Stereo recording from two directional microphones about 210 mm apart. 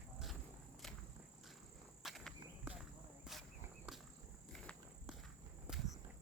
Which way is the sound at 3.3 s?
Centre (ahead or behind).